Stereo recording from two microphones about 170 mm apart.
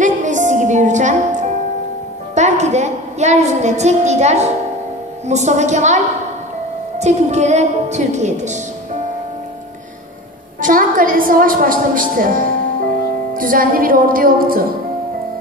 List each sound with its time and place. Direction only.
0.0 s music: 45° right (ahead or behind)
2.3 s a woman's voice: 40° right (ahead or behind)
7.0 s a woman's voice: 40° right (ahead or behind)
10.6 s a woman's voice: 55° right (ahead or behind)